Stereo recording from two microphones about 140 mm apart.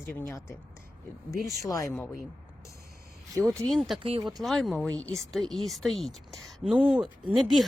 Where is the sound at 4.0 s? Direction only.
40° right (ahead or behind).